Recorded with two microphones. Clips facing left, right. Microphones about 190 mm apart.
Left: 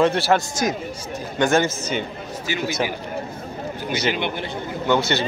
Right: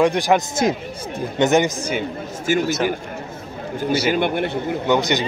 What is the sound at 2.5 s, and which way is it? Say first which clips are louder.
Speech: right 9 dB; 50° right (ahead or behind).